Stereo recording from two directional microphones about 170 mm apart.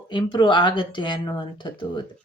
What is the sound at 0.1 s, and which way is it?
Speech, 30° left (ahead or behind).